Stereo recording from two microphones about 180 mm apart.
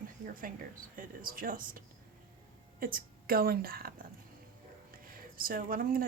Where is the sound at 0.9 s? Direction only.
50° right (ahead or behind).